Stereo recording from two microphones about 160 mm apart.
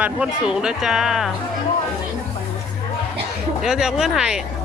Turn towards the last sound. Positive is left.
turn(degrees=-5)  # may be behind; listen again after turning